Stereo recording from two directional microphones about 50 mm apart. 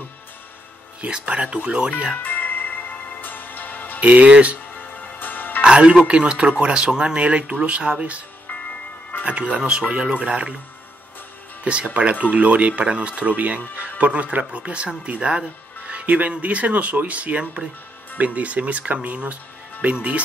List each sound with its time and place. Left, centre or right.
1.0 s speech: right
2.2 s music: left
4.0 s speech: right
4.7 s music: left
5.6 s speech: right
9.2 s speech: right
11.6 s speech: right